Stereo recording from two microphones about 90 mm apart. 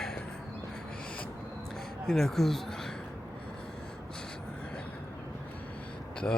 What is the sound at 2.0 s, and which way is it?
Speech, 5° left (ahead or behind).